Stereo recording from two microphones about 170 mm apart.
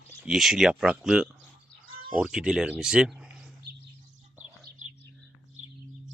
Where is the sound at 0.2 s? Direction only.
Centre (ahead or behind).